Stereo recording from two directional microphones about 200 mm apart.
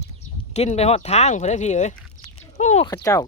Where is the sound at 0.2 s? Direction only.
35° left (ahead or behind).